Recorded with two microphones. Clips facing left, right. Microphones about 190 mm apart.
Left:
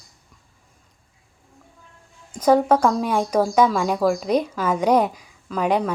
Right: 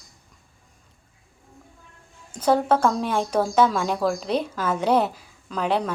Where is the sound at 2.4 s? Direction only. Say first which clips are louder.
Left 3 dB; 10° left (ahead or behind).